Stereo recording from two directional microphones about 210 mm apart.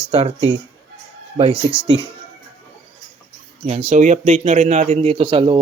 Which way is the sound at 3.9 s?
35° right (ahead or behind).